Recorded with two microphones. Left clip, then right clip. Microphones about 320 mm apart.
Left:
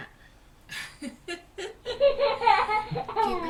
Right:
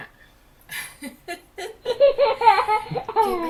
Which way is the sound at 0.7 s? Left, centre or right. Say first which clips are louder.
Right 4 dB; centre.